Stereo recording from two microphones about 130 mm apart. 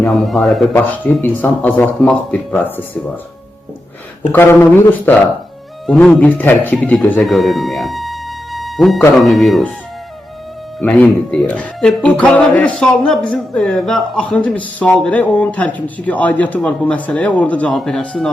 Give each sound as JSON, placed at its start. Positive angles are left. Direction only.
{"t": 0.1, "sound": "speech", "side_deg": 0}
{"t": 0.8, "sound": "speech", "side_deg": 15}
{"t": 4.3, "sound": "speech", "side_deg": 15}
{"t": 5.8, "sound": "speech", "side_deg": 5}
{"t": 7.3, "sound": "music", "side_deg": 0}
{"t": 9.1, "sound": "speech", "side_deg": 0}
{"t": 10.8, "sound": "speech", "side_deg": 10}